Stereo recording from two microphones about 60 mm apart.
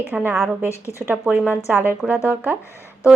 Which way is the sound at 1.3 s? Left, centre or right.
Right.